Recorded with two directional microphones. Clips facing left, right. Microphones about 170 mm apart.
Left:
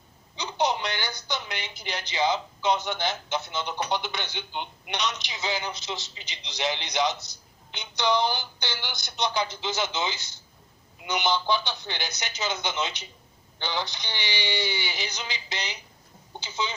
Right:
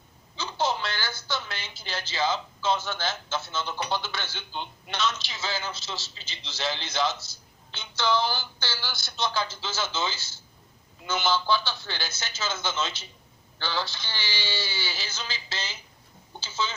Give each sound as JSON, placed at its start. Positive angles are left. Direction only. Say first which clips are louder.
{"t": 0.3, "sound": "a woman's voice", "louder": "left 2 dB", "side_deg": 20}